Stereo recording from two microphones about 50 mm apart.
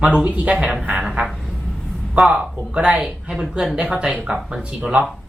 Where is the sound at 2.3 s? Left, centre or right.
Right.